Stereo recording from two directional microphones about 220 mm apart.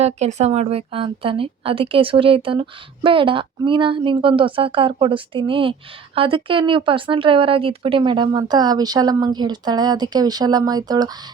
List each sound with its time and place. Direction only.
0.0 s a woman's voice: 30° right (ahead or behind)